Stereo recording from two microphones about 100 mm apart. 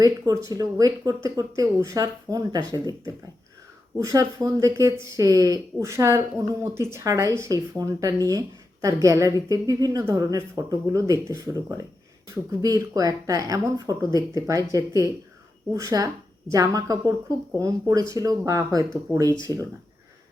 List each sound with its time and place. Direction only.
0.0 s a woman's voice: 35° right (ahead or behind)
4.0 s a woman's voice: 35° right (ahead or behind)